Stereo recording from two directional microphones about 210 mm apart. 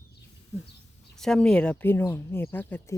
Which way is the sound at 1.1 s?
5° left (ahead or behind).